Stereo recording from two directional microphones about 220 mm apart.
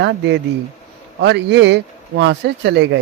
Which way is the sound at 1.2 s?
50° right (ahead or behind).